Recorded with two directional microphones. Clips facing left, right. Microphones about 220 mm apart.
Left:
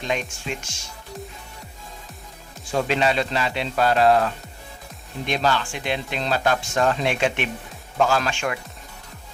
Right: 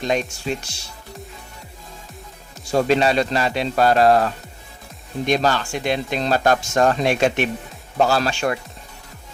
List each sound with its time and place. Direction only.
0.0 s speech: 40° right (ahead or behind)
2.6 s speech: 40° right (ahead or behind)
5.2 s speech: 40° right (ahead or behind)